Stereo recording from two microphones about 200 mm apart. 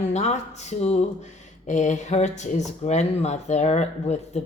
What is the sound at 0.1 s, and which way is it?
Speech, 35° left (ahead or behind).